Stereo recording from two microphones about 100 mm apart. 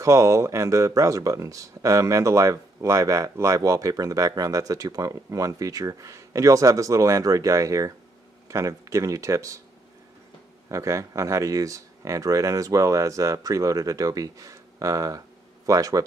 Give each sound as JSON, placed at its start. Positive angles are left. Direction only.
{"t": 0.0, "sound": "speech", "side_deg": -30}
{"t": 10.7, "sound": "speech", "side_deg": -30}